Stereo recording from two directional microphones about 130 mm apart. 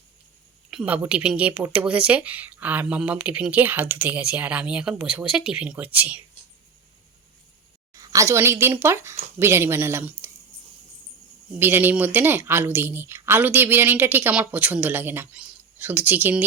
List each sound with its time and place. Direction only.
0.7 s speech: 10° right (ahead or behind)
7.9 s speech: 25° right (ahead or behind)
11.6 s speech: 15° right (ahead or behind)